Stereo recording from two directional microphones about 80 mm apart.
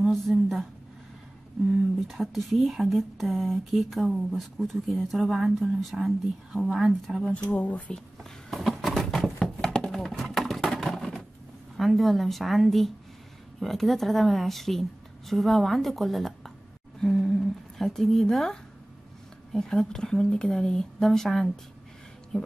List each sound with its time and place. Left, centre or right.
0.1 s speech: centre
2.0 s speech: centre
7.3 s speech: centre
8.2 s a sound: centre
11.7 s a woman's voice: centre